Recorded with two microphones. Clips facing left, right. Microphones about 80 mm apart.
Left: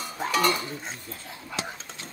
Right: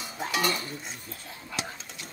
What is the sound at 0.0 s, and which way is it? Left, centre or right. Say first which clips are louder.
Speech: left 4 dB; left.